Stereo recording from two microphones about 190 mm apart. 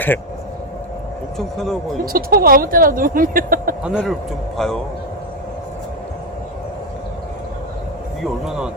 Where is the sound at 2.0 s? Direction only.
50° right (ahead or behind).